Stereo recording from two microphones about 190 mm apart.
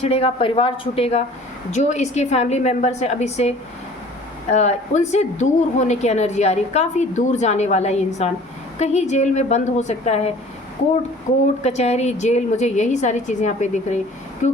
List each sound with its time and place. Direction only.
0.0 s a woman's voice: 30° left (ahead or behind)
4.5 s a woman's voice: 35° left (ahead or behind)
11.6 s a woman's voice: 35° left (ahead or behind)
14.4 s vehicle: 40° left (ahead or behind)